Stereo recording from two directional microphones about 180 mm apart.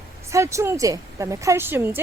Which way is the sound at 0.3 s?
15° right (ahead or behind).